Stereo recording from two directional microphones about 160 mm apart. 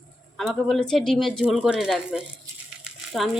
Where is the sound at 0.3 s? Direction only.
Centre (ahead or behind).